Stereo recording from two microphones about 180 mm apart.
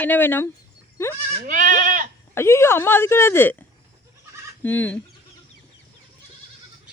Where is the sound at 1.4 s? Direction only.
50° right (ahead or behind).